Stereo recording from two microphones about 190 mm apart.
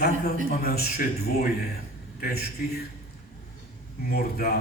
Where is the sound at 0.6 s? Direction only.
55° left (ahead or behind).